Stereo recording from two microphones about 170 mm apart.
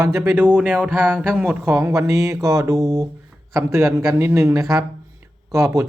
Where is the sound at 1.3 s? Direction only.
10° right (ahead or behind).